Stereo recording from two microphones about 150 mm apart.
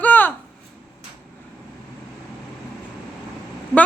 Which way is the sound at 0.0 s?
10° left (ahead or behind).